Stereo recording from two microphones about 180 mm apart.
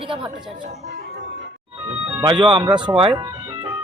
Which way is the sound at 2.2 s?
25° right (ahead or behind).